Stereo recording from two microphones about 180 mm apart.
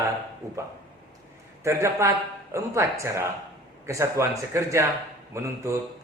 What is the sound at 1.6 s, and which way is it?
A man's voice, 15° right (ahead or behind).